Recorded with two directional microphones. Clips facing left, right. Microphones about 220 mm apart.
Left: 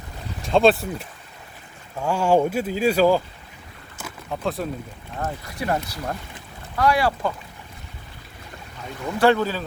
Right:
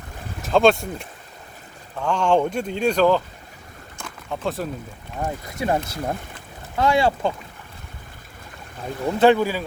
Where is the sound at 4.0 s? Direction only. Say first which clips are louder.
Even; 5° left (ahead or behind).